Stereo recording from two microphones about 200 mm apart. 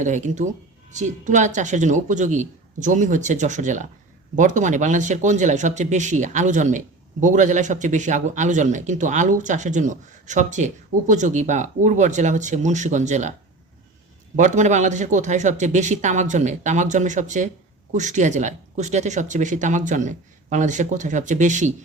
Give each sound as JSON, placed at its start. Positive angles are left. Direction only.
{"t": 0.0, "sound": "speech", "side_deg": -35}
{"t": 14.3, "sound": "speech", "side_deg": -35}